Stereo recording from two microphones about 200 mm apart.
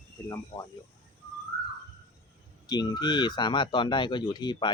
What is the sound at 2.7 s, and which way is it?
Speech, 20° left (ahead or behind).